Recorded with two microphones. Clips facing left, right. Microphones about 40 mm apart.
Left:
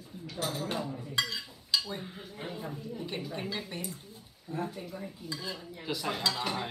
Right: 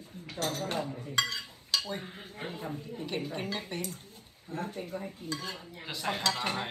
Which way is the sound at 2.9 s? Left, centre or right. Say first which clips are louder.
Right 3 dB; right.